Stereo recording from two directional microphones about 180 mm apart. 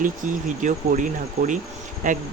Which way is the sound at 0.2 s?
45° right (ahead or behind).